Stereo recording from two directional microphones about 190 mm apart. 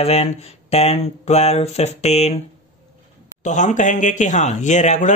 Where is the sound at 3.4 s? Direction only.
40° left (ahead or behind).